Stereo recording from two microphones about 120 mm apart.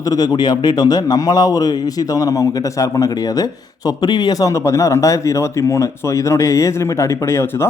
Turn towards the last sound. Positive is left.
turn(degrees=20)  # may be behind; listen again after turning